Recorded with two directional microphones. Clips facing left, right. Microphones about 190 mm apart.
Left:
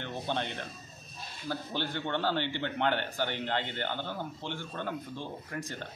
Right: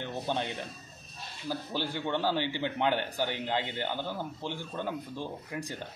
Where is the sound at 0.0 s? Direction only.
10° right (ahead or behind).